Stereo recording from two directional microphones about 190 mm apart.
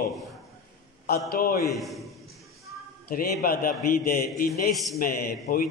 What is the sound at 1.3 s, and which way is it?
Speech, 50° left (ahead or behind).